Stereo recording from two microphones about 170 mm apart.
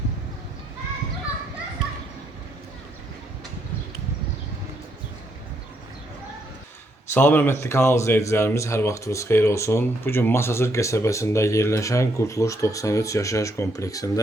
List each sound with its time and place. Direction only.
7.1 s speech: 15° left (ahead or behind)